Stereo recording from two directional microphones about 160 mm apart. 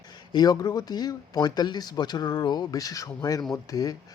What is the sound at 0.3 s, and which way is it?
Speech, 25° left (ahead or behind).